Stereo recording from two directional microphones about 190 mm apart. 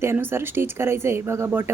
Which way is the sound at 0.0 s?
15° right (ahead or behind).